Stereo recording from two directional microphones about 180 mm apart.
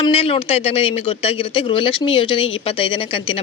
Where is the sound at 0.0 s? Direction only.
30° left (ahead or behind).